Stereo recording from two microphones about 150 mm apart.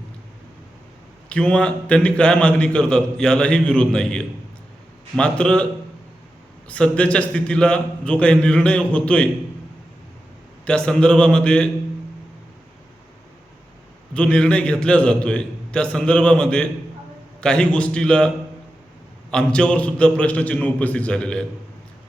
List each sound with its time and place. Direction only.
1.3 s a man's voice: 5° left (ahead or behind)
6.7 s a man's voice: 5° left (ahead or behind)
10.7 s a man's voice: 5° left (ahead or behind)
14.1 s a man's voice: 5° left (ahead or behind)
19.3 s a man's voice: 5° left (ahead or behind)